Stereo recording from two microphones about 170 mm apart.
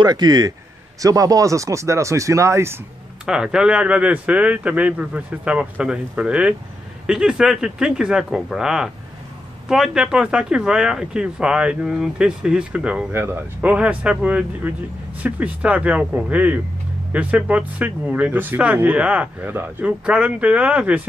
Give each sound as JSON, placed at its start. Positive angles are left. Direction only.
{"t": 0.0, "sound": "speech", "side_deg": -25}
{"t": 3.3, "sound": "speech", "side_deg": -5}